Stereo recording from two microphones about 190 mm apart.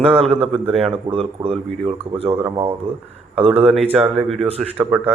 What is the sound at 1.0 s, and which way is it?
Speech, 30° right (ahead or behind).